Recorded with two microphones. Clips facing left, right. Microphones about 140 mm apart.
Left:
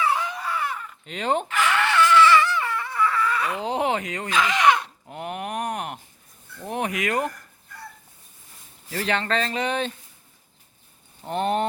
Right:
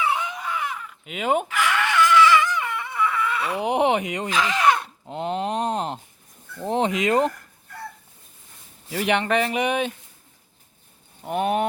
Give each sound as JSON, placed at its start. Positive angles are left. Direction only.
{"t": 0.0, "sound": "baby cry", "side_deg": -20}
{"t": 0.6, "sound": "chicken", "side_deg": -10}
{"t": 3.6, "sound": "a sound", "side_deg": -20}
{"t": 8.9, "sound": "speech", "side_deg": -15}
{"t": 11.2, "sound": "speech", "side_deg": -10}